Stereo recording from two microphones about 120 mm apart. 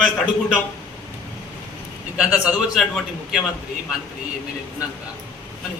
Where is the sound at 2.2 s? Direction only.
5° right (ahead or behind).